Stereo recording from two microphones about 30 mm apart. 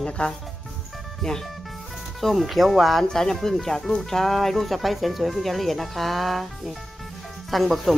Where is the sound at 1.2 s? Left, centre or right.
Centre.